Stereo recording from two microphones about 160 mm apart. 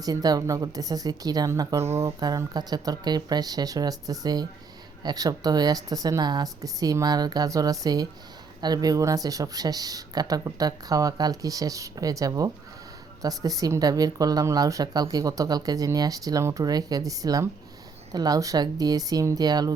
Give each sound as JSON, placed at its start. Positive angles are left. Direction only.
{"t": 0.0, "sound": "a woman's voice", "side_deg": -25}